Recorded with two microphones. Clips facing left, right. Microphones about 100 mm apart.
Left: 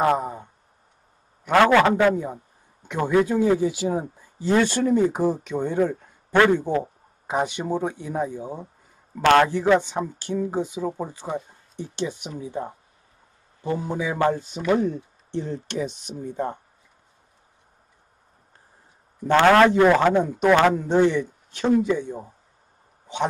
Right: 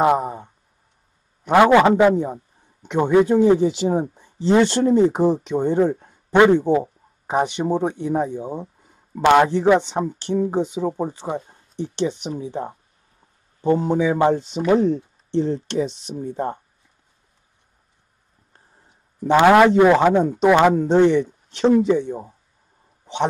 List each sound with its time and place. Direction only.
0.0 s a sound: 20° right (ahead or behind)
1.4 s a man's voice: 20° right (ahead or behind)
19.2 s a man's voice: 15° right (ahead or behind)